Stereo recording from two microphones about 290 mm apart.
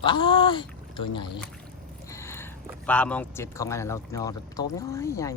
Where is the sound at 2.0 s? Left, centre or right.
Centre.